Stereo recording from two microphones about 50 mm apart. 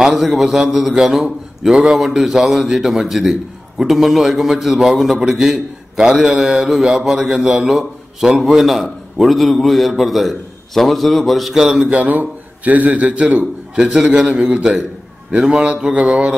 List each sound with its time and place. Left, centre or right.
0.0 s a man's voice: centre
11.5 s a man's voice: centre
11.9 s a man's voice: right
13.7 s a man's voice: centre